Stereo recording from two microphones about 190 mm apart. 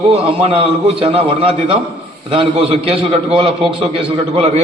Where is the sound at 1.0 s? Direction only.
30° right (ahead or behind).